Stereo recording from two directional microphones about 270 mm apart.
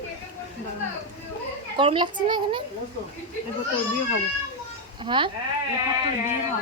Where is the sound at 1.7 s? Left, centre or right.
Centre.